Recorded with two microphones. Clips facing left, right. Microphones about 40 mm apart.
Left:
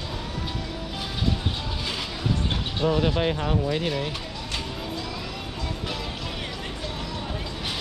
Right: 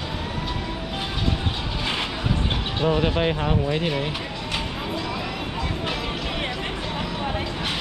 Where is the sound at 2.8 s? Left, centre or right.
Right.